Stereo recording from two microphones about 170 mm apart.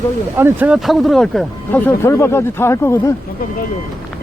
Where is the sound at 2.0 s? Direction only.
15° left (ahead or behind).